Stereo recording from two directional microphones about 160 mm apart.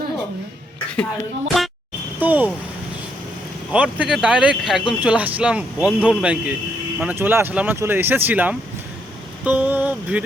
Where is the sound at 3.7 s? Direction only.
10° right (ahead or behind).